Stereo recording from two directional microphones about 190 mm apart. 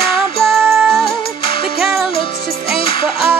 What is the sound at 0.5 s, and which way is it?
Music, centre (ahead or behind).